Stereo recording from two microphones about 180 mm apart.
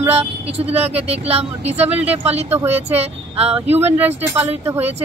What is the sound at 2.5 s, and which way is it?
Speech, 10° right (ahead or behind).